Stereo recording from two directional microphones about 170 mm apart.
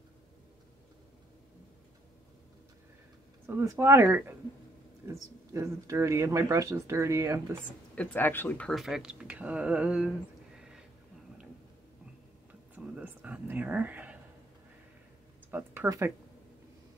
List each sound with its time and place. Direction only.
3.4 s speech: 15° right (ahead or behind)
7.9 s speech: 10° left (ahead or behind); by 10.1 s 5° right (ahead or behind)
10.6 s a sound: 5° right (ahead or behind)
12.7 s whispering: 10° right (ahead or behind)
15.5 s speech: 15° right (ahead or behind)